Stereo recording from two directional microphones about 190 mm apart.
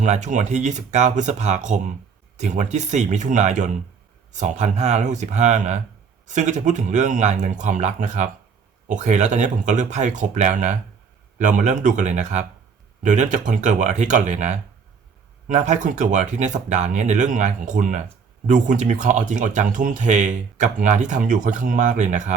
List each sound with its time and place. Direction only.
0.0 s speech: 40° right (ahead or behind)